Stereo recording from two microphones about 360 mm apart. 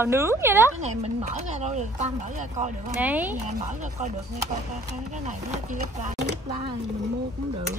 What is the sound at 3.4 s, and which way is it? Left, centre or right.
A woman's voice, centre.